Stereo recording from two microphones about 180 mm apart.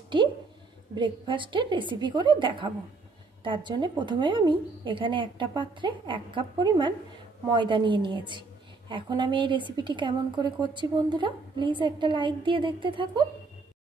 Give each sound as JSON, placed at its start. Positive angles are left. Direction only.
{"t": 0.9, "sound": "a woman's voice", "side_deg": -25}